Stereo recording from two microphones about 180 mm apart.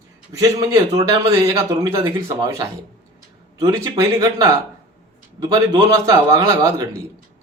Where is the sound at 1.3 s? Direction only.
15° right (ahead or behind).